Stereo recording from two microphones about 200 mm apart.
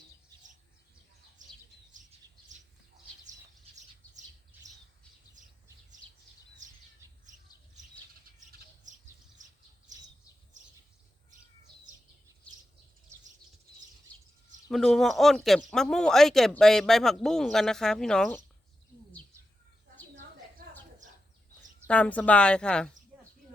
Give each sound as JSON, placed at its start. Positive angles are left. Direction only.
{"t": 1.4, "sound": "bird", "side_deg": -40}
{"t": 5.4, "sound": "bird", "side_deg": -40}
{"t": 9.4, "sound": "bird", "side_deg": -40}
{"t": 12.4, "sound": "bird", "side_deg": 5}
{"t": 14.7, "sound": "speech", "side_deg": 0}
{"t": 20.6, "sound": "a sound", "side_deg": -45}
{"t": 21.8, "sound": "speech", "side_deg": 5}